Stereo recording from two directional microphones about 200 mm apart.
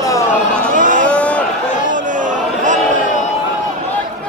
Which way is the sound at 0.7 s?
40° right (ahead or behind).